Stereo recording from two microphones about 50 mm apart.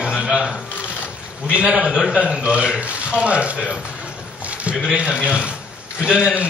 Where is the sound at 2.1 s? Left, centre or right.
Centre.